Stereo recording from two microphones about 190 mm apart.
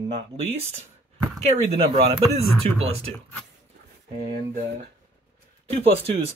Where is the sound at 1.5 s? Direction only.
30° right (ahead or behind).